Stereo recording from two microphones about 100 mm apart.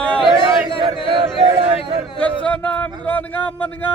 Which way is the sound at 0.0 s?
10° left (ahead or behind).